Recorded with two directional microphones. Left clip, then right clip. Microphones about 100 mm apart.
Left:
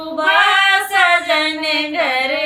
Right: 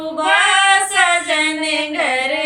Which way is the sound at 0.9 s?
35° left (ahead or behind).